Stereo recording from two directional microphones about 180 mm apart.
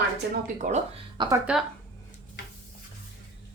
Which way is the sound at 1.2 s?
25° right (ahead or behind).